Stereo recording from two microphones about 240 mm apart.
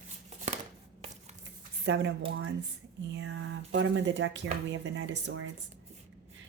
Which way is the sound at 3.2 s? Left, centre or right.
Right.